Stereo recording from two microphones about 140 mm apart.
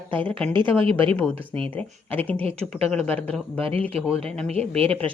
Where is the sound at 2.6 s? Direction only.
5° left (ahead or behind).